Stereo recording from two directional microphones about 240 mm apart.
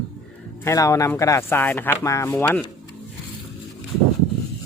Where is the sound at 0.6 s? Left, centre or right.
Centre.